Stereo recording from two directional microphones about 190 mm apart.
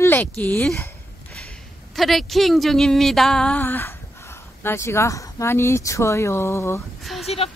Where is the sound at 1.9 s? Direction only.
Centre (ahead or behind).